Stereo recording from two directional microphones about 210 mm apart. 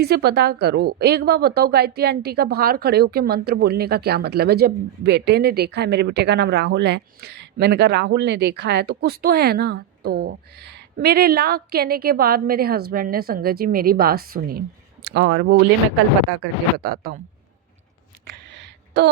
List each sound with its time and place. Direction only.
0.0 s a woman's voice: 50° right (ahead or behind)
16.7 s a woman's voice: 45° right (ahead or behind)
18.3 s a sound: 55° right (ahead or behind)